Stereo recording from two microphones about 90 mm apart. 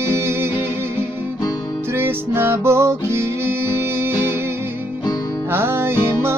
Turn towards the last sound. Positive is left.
turn(degrees=-30)  # may be behind; listen again after turning